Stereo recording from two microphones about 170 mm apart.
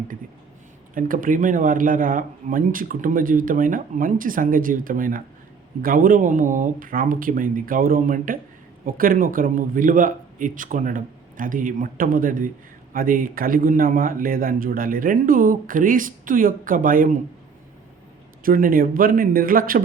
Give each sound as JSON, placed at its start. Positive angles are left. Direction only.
{"t": 0.9, "sound": "a man's voice", "side_deg": -55}
{"t": 18.4, "sound": "a man's voice", "side_deg": -55}